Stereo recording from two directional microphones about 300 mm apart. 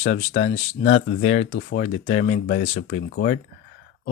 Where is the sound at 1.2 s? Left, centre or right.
Left.